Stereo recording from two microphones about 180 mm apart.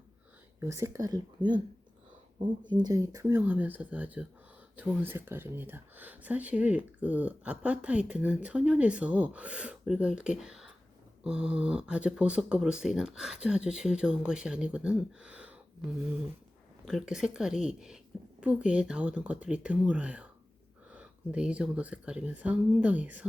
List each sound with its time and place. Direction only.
0.6 s speech: 15° right (ahead or behind)
2.6 s speech: 25° right (ahead or behind); by 15.5 s 5° right (ahead or behind)
16.8 s speech: centre (ahead or behind)